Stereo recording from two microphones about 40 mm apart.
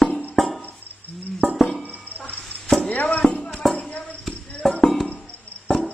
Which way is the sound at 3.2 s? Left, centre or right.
Left.